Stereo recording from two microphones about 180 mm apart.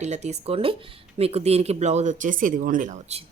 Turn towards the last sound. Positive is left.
turn(degrees=-40)  # may be behind; listen again after turning